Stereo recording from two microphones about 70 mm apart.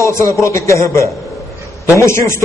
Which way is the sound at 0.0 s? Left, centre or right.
Left.